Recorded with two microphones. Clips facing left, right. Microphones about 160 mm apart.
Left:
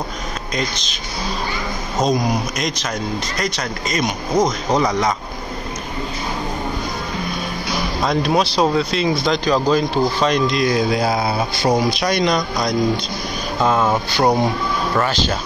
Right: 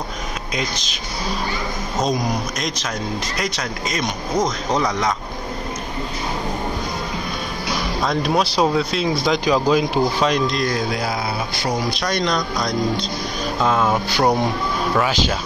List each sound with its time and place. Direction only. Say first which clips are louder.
2.0 s speech: left 3 dB; centre (ahead or behind)
8.0 s speech: left 2 dB; centre (ahead or behind)
10.9 s speech: left 5 dB; 25° left (ahead or behind)
12.0 s speech: left 3 dB; 10° left (ahead or behind)
15.0 s speech: even; 5° right (ahead or behind)